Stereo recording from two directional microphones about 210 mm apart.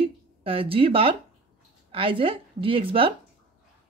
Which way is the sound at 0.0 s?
25° right (ahead or behind).